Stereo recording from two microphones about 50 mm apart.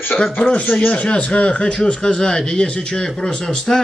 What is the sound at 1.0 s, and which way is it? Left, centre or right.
Speech, left.